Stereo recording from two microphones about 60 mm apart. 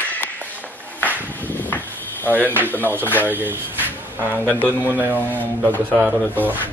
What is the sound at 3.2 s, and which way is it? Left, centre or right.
A man's voice, right.